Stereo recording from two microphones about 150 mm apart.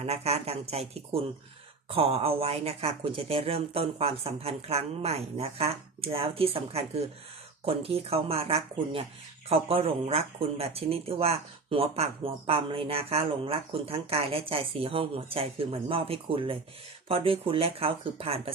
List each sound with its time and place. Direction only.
0.0 s speech: 45° right (ahead or behind)